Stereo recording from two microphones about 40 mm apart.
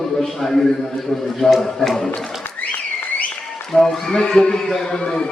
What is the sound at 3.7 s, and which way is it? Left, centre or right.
A man's voice, centre.